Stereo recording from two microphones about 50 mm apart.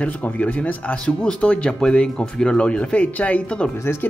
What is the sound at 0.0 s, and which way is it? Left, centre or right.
Speech, left.